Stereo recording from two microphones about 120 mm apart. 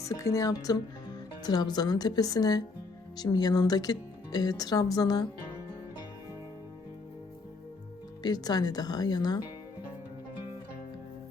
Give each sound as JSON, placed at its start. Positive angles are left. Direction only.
{"t": 0.0, "sound": "speech", "side_deg": 30}
{"t": 8.2, "sound": "speech", "side_deg": 35}